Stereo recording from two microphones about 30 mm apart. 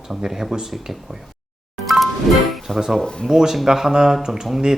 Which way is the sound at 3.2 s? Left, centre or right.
Centre.